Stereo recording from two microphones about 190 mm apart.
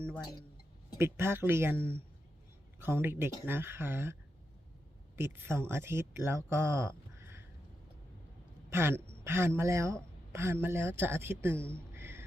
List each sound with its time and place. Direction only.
0.9 s a woman's voice: 15° right (ahead or behind)
8.7 s a woman's voice: 10° right (ahead or behind)
11.5 s speech: 5° left (ahead or behind)
11.9 s music: 10° right (ahead or behind)